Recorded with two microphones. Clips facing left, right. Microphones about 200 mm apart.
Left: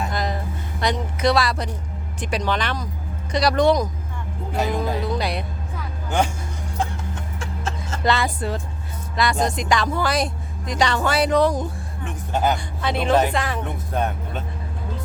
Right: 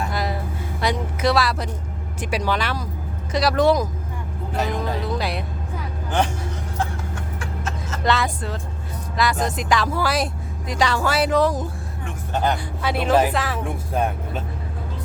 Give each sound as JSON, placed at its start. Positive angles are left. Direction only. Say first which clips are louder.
{"t": 0.1, "sound": "a sound", "louder": "even", "side_deg": -5}
{"t": 0.8, "sound": "speech", "louder": "even", "side_deg": -5}
{"t": 4.5, "sound": "music", "louder": "left 1 dB", "side_deg": 10}
{"t": 6.1, "sound": "vehicle", "louder": "even", "side_deg": 10}
{"t": 7.3, "sound": "a sound", "louder": "left 1 dB", "side_deg": 30}
{"t": 8.0, "sound": "speech", "louder": "left 1 dB", "side_deg": 0}
{"t": 12.3, "sound": "speech", "louder": "left 1 dB", "side_deg": 10}
{"t": 12.8, "sound": "speech", "louder": "right 1 dB", "side_deg": -5}